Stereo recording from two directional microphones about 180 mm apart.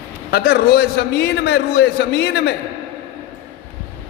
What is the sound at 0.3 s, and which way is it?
A man's voice, 60° left (ahead or behind).